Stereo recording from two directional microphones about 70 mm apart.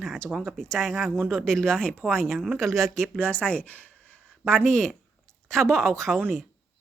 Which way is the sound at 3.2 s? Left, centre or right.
Centre.